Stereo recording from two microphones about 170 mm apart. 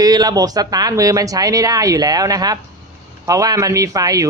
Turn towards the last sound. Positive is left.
turn(degrees=-20)  # may be behind; listen again after turning